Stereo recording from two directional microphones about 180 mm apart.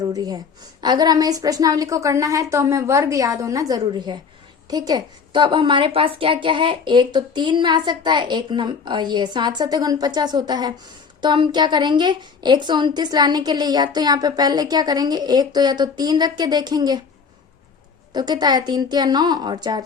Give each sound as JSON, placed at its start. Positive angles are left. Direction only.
{"t": 0.0, "sound": "a woman's voice", "side_deg": -20}
{"t": 18.1, "sound": "a woman's voice", "side_deg": -25}